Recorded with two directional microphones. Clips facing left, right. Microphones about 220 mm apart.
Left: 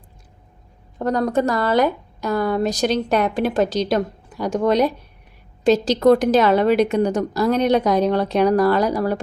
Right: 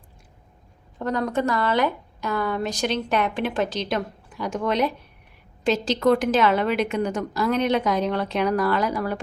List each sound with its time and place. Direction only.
0.9 s a woman's voice: 40° left (ahead or behind)